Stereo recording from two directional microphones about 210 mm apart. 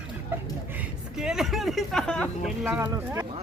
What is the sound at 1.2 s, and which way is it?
Speech, centre (ahead or behind).